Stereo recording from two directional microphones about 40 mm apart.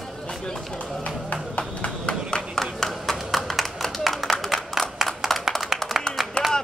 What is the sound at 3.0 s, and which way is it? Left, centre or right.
Tap, centre.